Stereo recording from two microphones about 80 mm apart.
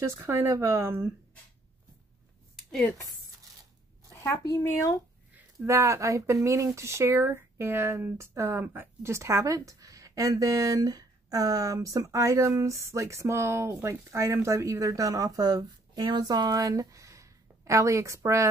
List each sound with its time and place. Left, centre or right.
0.0 s speech: right
4.1 s speech: left
5.7 s speech: right